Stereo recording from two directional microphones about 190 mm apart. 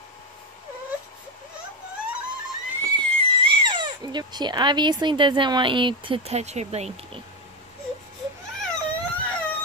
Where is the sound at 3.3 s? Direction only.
25° right (ahead or behind).